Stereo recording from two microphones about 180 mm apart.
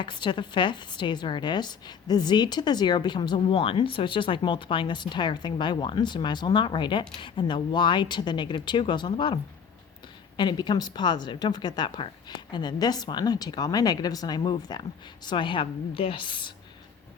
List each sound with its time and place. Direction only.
0.0 s a woman's voice: 25° left (ahead or behind)